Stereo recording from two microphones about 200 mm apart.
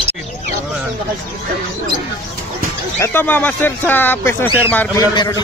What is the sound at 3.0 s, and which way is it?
Speech, 10° left (ahead or behind).